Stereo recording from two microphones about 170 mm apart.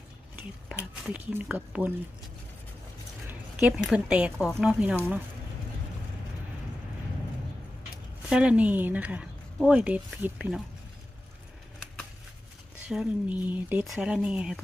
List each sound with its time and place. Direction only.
0.7 s speech: 10° right (ahead or behind)
3.2 s speech: 5° right (ahead or behind)
8.3 s speech: 5° right (ahead or behind)
12.9 s speech: 5° right (ahead or behind)